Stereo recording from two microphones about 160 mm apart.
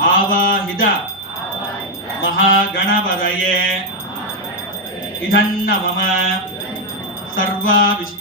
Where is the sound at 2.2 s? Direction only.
65° left (ahead or behind).